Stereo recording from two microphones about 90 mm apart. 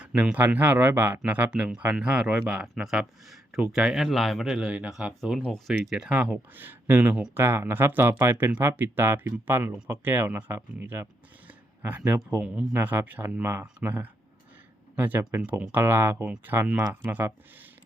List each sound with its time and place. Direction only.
0.0 s speech: 15° right (ahead or behind)
5.4 s speech: 5° left (ahead or behind)
6.1 s speech: 15° right (ahead or behind)